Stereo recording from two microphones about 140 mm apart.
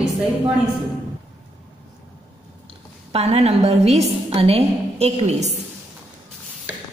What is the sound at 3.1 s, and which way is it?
A woman's voice, 45° right (ahead or behind).